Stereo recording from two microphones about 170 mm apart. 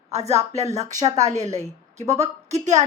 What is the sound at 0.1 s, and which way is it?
Speech, 40° right (ahead or behind).